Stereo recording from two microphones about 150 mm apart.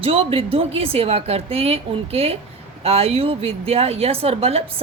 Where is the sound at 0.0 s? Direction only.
40° right (ahead or behind).